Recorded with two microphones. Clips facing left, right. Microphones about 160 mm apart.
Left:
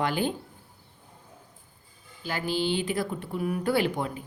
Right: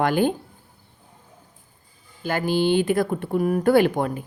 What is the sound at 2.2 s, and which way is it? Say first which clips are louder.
A woman's voice: right 7 dB; 55° right (ahead or behind).